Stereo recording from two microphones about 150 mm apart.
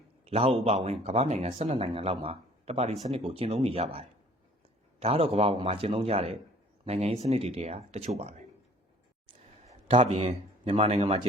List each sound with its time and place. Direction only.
0.3 s a man's voice: 40° right (ahead or behind)
9.9 s speech: 45° right (ahead or behind)